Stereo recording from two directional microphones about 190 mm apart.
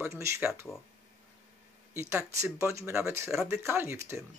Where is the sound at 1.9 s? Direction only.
15° right (ahead or behind).